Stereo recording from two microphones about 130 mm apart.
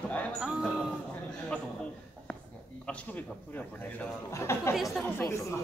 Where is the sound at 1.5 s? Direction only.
10° left (ahead or behind).